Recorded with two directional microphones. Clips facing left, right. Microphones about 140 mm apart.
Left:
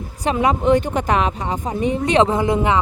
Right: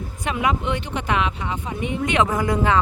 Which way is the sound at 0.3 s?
35° left (ahead or behind).